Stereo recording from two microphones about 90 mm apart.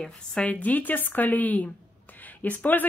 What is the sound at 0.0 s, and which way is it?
Speech, 10° left (ahead or behind).